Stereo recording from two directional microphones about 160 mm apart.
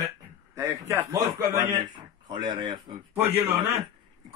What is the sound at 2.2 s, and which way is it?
Speech, 30° right (ahead or behind).